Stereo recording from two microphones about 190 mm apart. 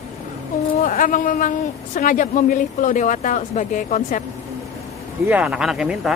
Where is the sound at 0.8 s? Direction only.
45° left (ahead or behind).